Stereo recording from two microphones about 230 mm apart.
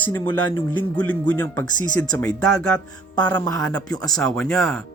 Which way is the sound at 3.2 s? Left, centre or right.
Centre.